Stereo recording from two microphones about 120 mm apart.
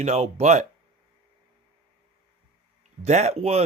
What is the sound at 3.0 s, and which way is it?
Speech, 70° right (ahead or behind).